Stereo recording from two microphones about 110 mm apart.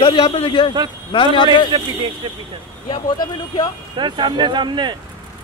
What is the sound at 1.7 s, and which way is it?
Speech, 45° right (ahead or behind).